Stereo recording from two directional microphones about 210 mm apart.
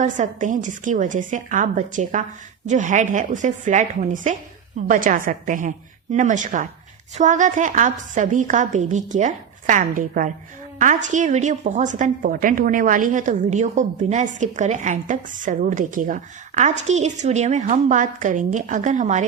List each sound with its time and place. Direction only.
0.0 s a woman's voice: 35° right (ahead or behind)